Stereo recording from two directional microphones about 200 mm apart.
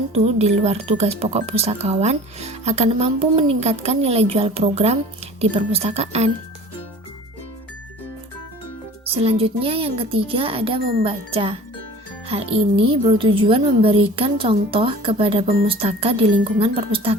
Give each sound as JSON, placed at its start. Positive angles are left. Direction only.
{"t": 0.1, "sound": "speech", "side_deg": -30}
{"t": 9.1, "sound": "a woman's voice", "side_deg": -30}